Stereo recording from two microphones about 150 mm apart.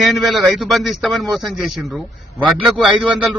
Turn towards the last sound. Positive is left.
turn(degrees=0)  # may be behind; listen again after turning